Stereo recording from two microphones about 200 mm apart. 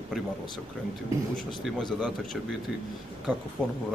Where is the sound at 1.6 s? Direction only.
Centre (ahead or behind).